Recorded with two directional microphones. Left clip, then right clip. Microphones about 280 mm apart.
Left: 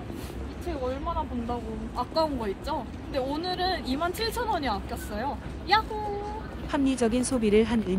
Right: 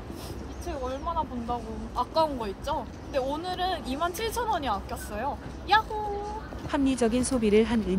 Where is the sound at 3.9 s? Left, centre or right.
Centre.